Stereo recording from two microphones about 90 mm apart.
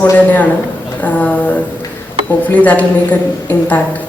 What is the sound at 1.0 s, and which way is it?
Speech, 20° left (ahead or behind).